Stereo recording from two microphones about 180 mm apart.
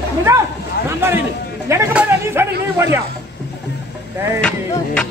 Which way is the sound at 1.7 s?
15° right (ahead or behind).